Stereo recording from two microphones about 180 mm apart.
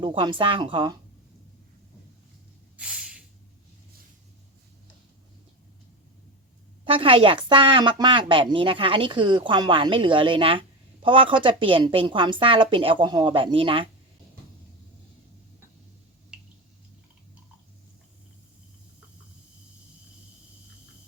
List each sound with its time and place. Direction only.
0.0 s a woman's voice: 25° right (ahead or behind)
2.7 s snort: 5° right (ahead or behind)
6.8 s a woman's voice: 30° right (ahead or behind)